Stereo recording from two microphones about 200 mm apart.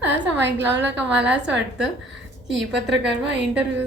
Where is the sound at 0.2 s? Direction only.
60° right (ahead or behind).